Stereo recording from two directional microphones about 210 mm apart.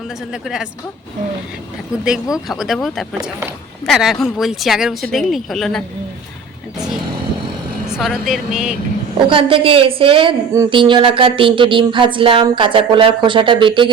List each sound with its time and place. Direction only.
0.4 s speech: centre (ahead or behind)
2.5 s speech: centre (ahead or behind)
7.9 s speech: centre (ahead or behind)
9.1 s a woman's voice: 25° right (ahead or behind)